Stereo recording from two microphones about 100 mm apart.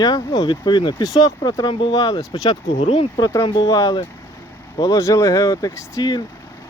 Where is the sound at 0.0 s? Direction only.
45° left (ahead or behind).